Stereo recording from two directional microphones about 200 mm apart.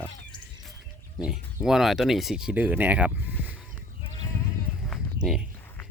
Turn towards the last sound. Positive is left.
turn(degrees=0)  # may be behind; listen again after turning